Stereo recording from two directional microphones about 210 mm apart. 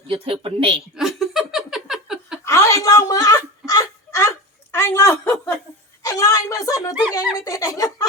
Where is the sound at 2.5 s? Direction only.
15° left (ahead or behind).